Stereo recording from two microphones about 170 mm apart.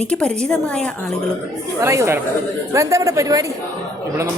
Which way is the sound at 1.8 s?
15° right (ahead or behind).